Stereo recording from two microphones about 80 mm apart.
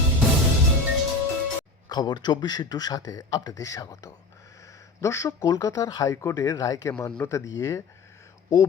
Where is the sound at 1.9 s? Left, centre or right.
Left.